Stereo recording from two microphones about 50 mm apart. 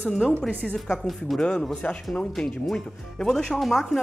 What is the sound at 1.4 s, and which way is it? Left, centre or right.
Speech, centre.